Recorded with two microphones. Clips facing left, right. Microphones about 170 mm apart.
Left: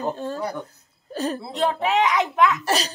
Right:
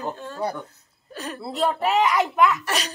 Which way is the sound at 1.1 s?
30° left (ahead or behind).